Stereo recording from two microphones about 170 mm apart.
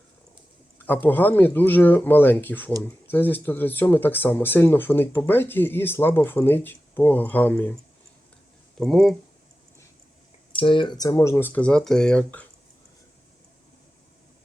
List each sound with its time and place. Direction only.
1.0 s speech: 10° left (ahead or behind)
8.8 s speech: centre (ahead or behind)
10.5 s speech: 30° left (ahead or behind); by 12.5 s 5° left (ahead or behind)